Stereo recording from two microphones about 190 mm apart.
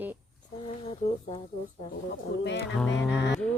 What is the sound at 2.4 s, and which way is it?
Speech, 65° left (ahead or behind).